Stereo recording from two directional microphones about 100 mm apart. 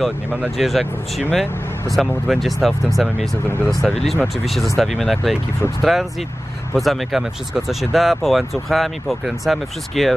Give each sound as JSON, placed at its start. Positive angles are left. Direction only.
{"t": 0.6, "sound": "speech", "side_deg": 0}
{"t": 3.4, "sound": "speech", "side_deg": 20}
{"t": 3.8, "sound": "speech", "side_deg": 0}